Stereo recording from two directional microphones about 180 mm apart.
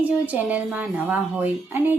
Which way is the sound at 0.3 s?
10° right (ahead or behind).